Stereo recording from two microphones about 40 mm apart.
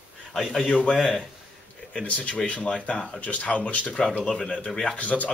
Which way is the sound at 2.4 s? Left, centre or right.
Left.